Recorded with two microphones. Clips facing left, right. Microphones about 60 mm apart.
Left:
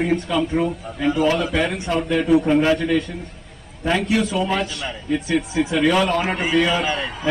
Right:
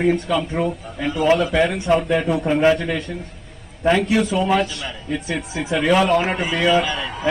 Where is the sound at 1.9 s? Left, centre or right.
Centre.